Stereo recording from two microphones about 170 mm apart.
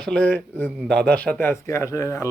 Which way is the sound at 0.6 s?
5° right (ahead or behind).